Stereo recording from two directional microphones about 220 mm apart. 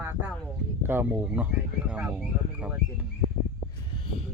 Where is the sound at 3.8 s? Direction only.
25° left (ahead or behind).